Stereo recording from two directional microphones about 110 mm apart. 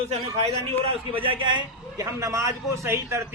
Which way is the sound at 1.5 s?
45° right (ahead or behind).